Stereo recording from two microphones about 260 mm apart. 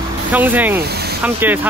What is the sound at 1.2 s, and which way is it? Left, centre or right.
Speech, centre.